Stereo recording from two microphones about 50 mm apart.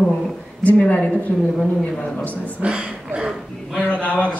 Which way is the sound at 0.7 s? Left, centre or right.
Left.